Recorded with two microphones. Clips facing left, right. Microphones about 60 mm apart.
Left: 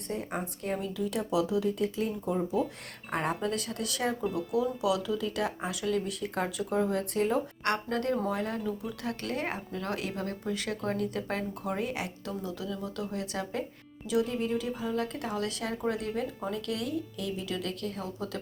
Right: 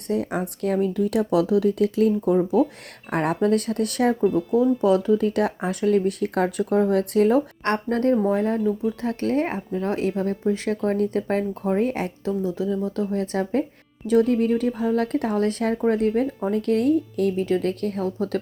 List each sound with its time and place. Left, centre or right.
0.1 s speech: right
4.4 s speech: right
7.6 s speech: right
8.1 s speech: right
12.2 s speech: right
14.1 s speech: right